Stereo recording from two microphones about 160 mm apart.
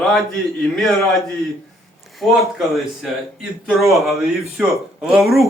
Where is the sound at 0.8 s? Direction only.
Centre (ahead or behind).